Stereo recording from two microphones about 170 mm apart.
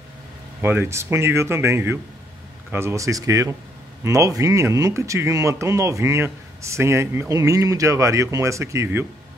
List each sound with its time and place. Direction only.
0.6 s speech: 15° right (ahead or behind)